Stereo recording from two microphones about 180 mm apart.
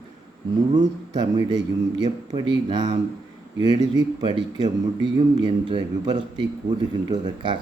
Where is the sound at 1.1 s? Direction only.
25° right (ahead or behind).